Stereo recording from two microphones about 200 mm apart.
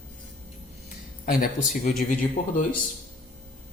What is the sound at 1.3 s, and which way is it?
A man's voice, 45° left (ahead or behind).